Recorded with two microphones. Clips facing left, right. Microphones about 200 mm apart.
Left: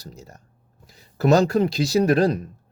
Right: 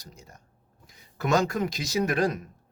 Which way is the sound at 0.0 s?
35° left (ahead or behind).